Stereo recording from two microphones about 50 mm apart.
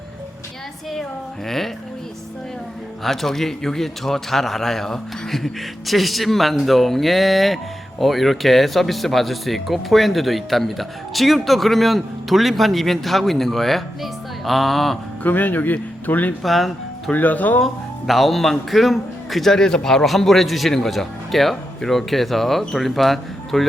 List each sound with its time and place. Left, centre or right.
1.5 s speech: centre
3.0 s speech: centre
15.2 s speech: left
16.4 s speech: centre
17.1 s speech: left
17.6 s speech: centre